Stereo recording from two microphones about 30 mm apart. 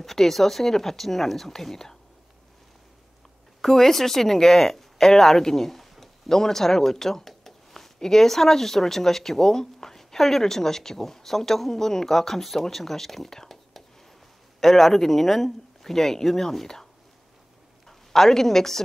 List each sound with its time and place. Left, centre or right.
0.0 s speech: centre
3.6 s speech: centre
5.8 s a sound: centre
6.3 s speech: centre
13.3 s whispering: centre
14.6 s speech: centre
17.8 s a woman's voice: centre